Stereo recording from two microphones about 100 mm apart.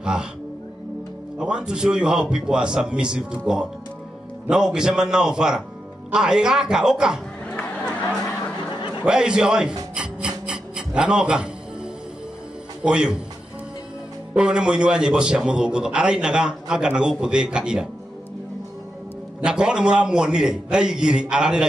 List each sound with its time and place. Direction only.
0.0 s speech: 5° right (ahead or behind)
1.4 s a man's voice: 10° right (ahead or behind)
9.0 s a man's voice: 10° right (ahead or behind)
10.4 s music: 10° right (ahead or behind)
12.8 s a man's voice: 10° right (ahead or behind)
14.3 s a man's voice: 10° right (ahead or behind)
19.4 s a man's voice: 10° right (ahead or behind)